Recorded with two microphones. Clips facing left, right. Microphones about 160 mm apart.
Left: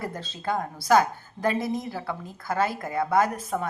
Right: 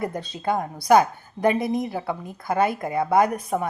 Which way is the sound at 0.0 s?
15° right (ahead or behind).